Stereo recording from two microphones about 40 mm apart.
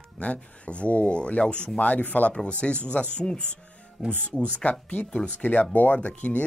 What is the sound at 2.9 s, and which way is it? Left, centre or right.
Speech, left.